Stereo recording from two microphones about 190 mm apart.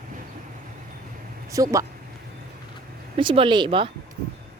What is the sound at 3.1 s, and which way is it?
Speech, 25° right (ahead or behind).